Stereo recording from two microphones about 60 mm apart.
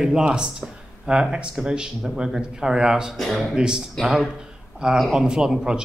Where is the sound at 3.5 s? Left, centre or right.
Centre.